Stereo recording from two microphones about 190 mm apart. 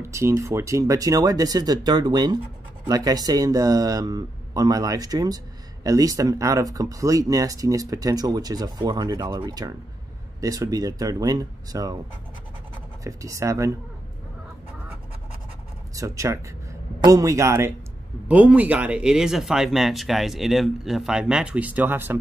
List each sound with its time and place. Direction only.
0.0 s speech: 15° right (ahead or behind)
13.0 s a man's voice: 15° right (ahead or behind)
15.9 s a man's voice: 15° right (ahead or behind)